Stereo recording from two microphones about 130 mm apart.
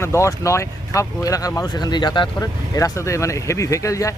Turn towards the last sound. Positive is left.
turn(degrees=25)  # may be behind; listen again after turning